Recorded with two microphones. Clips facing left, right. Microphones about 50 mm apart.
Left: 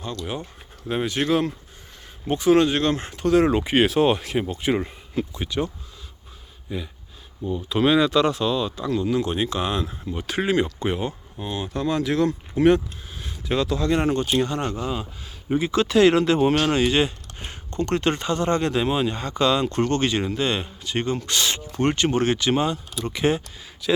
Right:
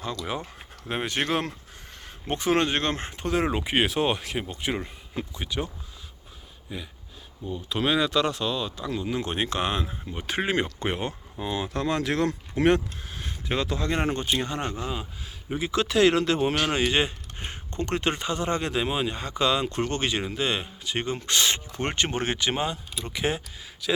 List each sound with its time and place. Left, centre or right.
0.9 s speech: right; by 4.9 s centre
5.5 s speech: centre
8.9 s speech: centre
9.2 s speech: right
10.1 s speech: right
11.7 s speech: right
13.5 s speech: right
14.8 s speech: centre
16.7 s speech: centre
21.2 s speech: right; by 24.0 s centre